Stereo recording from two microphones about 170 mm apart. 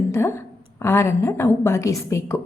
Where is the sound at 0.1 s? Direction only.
15° left (ahead or behind).